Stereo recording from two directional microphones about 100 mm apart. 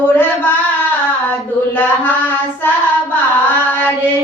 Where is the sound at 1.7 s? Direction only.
20° left (ahead or behind).